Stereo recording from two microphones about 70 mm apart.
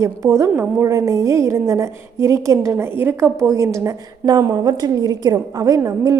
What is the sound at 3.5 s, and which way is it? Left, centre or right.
Speech, right.